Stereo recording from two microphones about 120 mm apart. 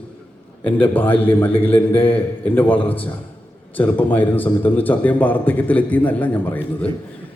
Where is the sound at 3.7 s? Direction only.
15° left (ahead or behind).